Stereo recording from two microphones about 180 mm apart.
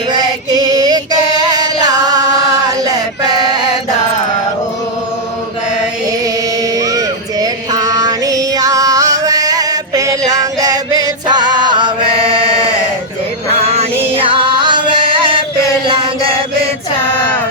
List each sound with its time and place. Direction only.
0.1 s female singing: 20° right (ahead or behind)
1.4 s singing: 20° right (ahead or behind)
6.2 s music: 20° right (ahead or behind)
13.6 s music: 35° right (ahead or behind)
15.9 s chant: 30° right (ahead or behind)
17.2 s music: 10° left (ahead or behind)